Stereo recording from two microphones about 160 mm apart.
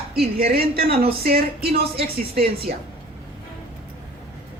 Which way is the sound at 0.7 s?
70° right (ahead or behind).